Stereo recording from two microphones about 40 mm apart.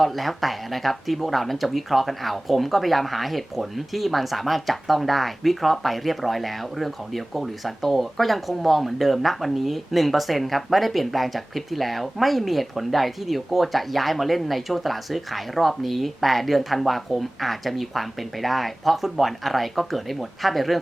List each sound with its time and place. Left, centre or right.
0.0 s speech: centre